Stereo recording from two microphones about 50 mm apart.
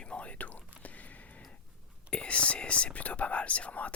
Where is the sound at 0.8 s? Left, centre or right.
Left.